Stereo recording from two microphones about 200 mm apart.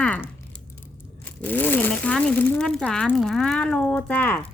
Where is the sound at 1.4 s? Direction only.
10° left (ahead or behind).